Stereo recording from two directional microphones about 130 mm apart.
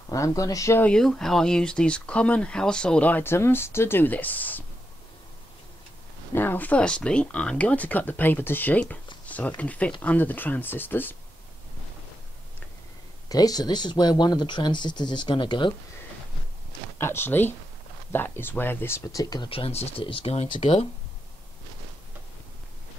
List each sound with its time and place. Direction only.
0.1 s speech: 25° left (ahead or behind)
0.8 s speech: 5° left (ahead or behind)
6.3 s speech: 15° left (ahead or behind)
13.3 s speech: 30° left (ahead or behind)
17.0 s speech: 20° left (ahead or behind)
19.5 s speech: 50° left (ahead or behind)